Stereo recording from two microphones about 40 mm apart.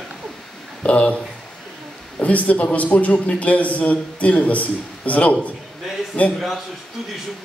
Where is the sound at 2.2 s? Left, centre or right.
Left.